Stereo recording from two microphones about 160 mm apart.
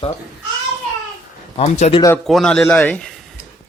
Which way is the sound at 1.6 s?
40° left (ahead or behind).